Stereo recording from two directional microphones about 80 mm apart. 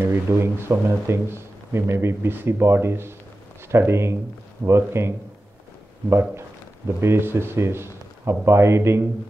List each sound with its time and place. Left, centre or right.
0.1 s a man's voice: right
7.0 s a man's voice: right